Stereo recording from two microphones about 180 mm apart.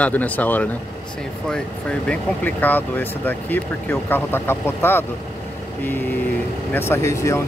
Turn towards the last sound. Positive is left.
turn(degrees=15)  # may be behind; listen again after turning